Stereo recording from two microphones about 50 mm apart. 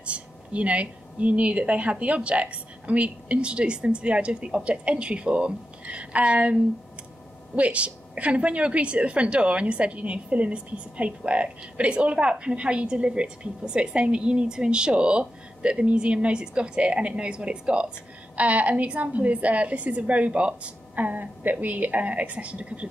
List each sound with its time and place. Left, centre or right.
0.0 s a woman's voice: right